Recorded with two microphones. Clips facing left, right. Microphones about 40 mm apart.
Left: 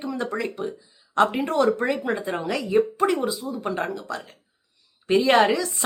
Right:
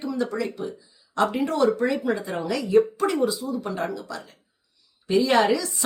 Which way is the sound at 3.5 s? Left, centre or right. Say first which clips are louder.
Left 1 dB; left.